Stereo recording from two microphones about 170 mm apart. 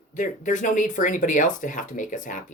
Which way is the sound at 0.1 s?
50° left (ahead or behind).